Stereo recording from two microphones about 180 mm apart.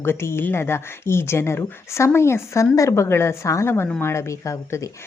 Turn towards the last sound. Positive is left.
turn(degrees=15)  # may be behind; listen again after turning